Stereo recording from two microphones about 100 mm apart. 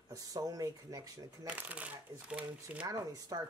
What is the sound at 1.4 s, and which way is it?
Speech, 15° right (ahead or behind).